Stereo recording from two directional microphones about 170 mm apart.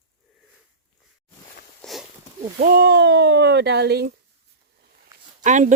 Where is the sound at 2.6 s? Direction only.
65° right (ahead or behind).